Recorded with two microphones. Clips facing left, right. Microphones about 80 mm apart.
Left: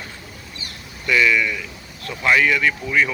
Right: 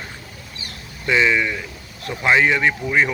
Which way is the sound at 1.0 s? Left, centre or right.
Right.